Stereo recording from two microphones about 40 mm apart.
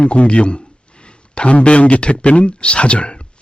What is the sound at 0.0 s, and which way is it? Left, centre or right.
Speech, left.